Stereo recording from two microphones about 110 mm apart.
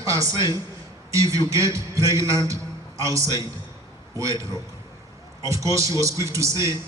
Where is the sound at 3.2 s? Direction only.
40° left (ahead or behind).